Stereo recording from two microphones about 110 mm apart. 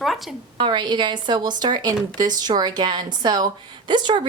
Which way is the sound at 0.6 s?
45° right (ahead or behind).